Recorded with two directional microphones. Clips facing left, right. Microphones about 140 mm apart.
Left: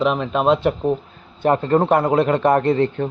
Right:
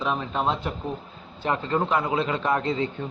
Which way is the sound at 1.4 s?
50° left (ahead or behind).